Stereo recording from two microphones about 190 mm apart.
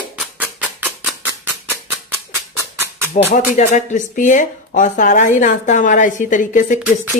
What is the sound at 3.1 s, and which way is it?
Speech, 40° left (ahead or behind).